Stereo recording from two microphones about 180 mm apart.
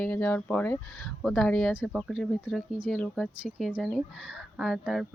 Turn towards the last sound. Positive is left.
turn(degrees=0)  # may be behind; listen again after turning